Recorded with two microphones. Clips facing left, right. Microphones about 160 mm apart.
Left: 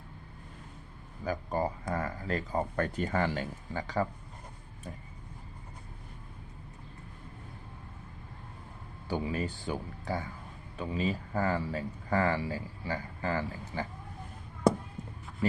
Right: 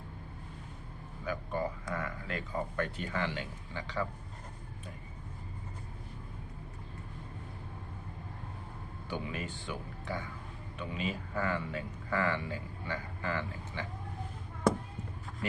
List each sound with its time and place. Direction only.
1.2 s speech: 35° left (ahead or behind)
9.0 s speech: 35° left (ahead or behind)